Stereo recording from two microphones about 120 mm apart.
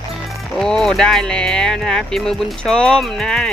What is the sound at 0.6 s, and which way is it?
Speech, 5° left (ahead or behind).